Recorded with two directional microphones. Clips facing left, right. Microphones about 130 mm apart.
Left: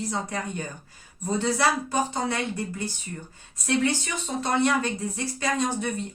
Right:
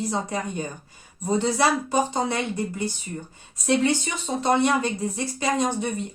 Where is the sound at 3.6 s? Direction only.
20° right (ahead or behind).